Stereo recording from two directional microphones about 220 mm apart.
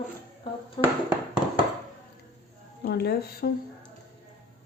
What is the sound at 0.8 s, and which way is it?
Speech, 20° left (ahead or behind).